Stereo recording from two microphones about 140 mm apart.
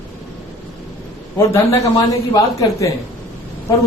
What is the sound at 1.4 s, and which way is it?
A man's voice, 25° left (ahead or behind).